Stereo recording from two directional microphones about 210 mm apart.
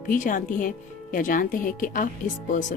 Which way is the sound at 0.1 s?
40° left (ahead or behind).